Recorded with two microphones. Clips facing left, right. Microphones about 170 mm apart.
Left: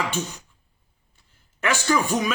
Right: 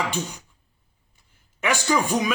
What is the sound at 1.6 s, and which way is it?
Speech, 15° right (ahead or behind).